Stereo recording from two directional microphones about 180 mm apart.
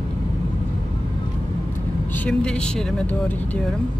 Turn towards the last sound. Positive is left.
turn(degrees=5)  # may be behind; listen again after turning